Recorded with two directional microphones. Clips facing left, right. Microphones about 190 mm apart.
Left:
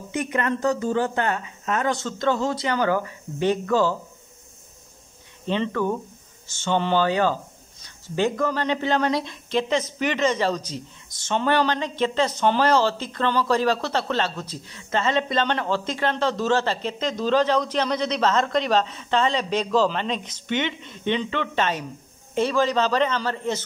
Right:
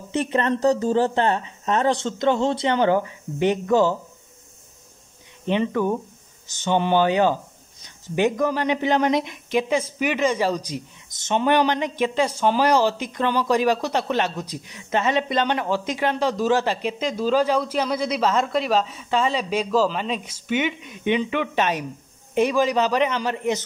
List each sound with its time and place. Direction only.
0.1 s speech: 30° right (ahead or behind)
5.5 s speech: 15° right (ahead or behind)